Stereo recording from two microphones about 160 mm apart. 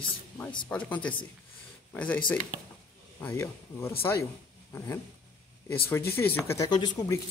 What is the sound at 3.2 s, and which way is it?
Speech, 15° left (ahead or behind).